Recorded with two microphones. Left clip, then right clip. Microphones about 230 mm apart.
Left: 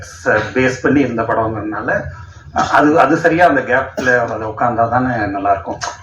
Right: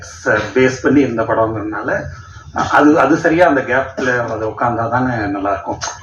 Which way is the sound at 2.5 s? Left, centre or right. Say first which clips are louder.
Even; left.